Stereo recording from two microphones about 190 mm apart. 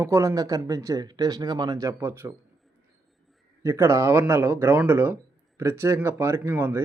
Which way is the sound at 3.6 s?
15° right (ahead or behind).